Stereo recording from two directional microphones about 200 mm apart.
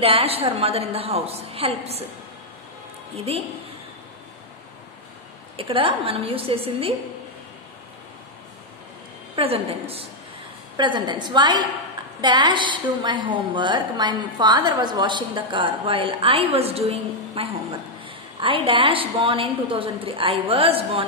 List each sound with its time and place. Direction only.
0.0 s a woman's voice: 30° right (ahead or behind)
3.2 s a woman's voice: 30° right (ahead or behind)
5.6 s a woman's voice: 25° right (ahead or behind)
9.3 s a woman's voice: 30° right (ahead or behind)